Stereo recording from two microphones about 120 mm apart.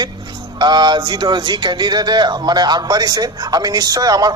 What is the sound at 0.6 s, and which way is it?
Speech, 40° right (ahead or behind).